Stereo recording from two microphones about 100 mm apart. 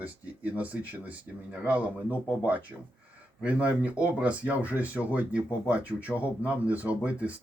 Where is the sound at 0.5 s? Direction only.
15° right (ahead or behind).